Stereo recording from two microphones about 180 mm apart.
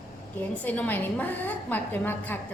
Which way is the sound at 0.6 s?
10° left (ahead or behind).